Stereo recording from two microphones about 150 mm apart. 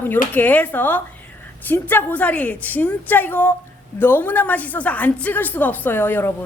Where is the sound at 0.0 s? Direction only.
10° left (ahead or behind).